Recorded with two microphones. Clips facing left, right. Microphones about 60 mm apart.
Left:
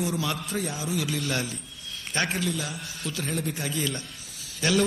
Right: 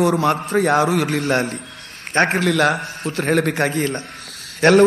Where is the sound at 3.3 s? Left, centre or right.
Right.